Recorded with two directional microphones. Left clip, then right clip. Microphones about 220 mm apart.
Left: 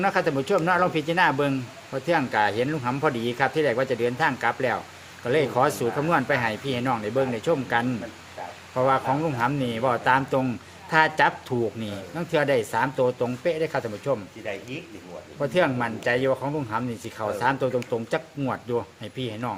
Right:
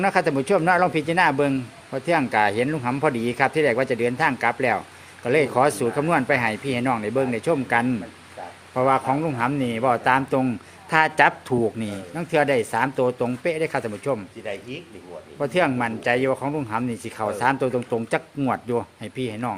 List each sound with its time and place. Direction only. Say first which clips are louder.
0.0 s speech: right 2 dB; 30° right (ahead or behind)
15.4 s speech: right 1 dB; 30° right (ahead or behind)